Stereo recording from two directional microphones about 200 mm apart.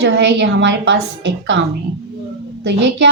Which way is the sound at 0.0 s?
60° right (ahead or behind).